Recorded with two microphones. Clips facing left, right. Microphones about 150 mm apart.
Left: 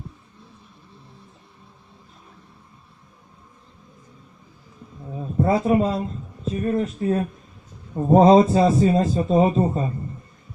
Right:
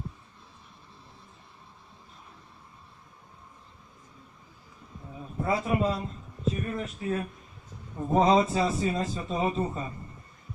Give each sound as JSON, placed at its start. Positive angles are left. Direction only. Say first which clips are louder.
{"t": 5.4, "sound": "a man's voice", "louder": "left 8 dB", "side_deg": 40}